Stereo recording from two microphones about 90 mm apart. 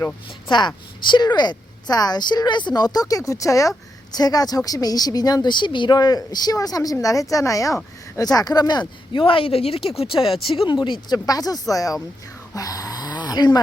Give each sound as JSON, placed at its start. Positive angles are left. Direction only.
{"t": 0.4, "sound": "a woman's voice", "side_deg": 55}
{"t": 9.1, "sound": "speech", "side_deg": 80}
{"t": 10.0, "sound": "speech", "side_deg": 80}
{"t": 10.5, "sound": "speech", "side_deg": 65}
{"t": 12.5, "sound": "a sound", "side_deg": 40}